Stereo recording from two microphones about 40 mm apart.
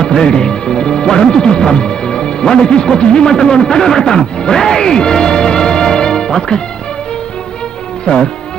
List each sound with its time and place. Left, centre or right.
0.0 s speech: centre
8.0 s speech: left